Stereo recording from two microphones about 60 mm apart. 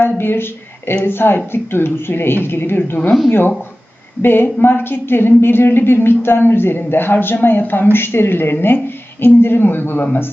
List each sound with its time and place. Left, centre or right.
0.0 s a woman's voice: left